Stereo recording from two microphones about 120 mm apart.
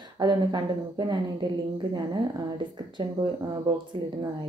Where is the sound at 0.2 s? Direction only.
35° right (ahead or behind).